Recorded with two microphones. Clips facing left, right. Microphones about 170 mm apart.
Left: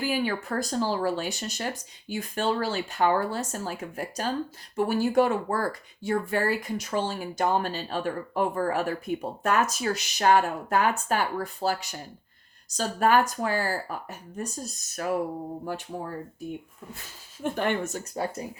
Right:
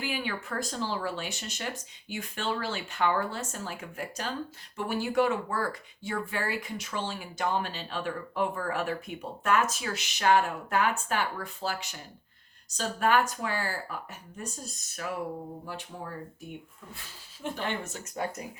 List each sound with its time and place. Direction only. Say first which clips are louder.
0.0 s speech: left 6 dB; 40° left (ahead or behind)
17.4 s speech: left 6 dB; 50° left (ahead or behind)